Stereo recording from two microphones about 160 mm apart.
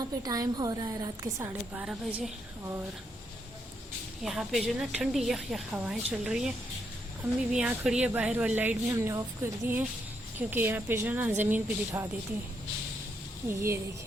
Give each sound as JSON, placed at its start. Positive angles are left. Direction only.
{"t": 0.0, "sound": "a woman's voice", "side_deg": -25}
{"t": 1.8, "sound": "speech", "side_deg": -5}
{"t": 4.2, "sound": "a woman's voice", "side_deg": 0}
{"t": 7.5, "sound": "speech", "side_deg": -5}
{"t": 13.5, "sound": "speech", "side_deg": -15}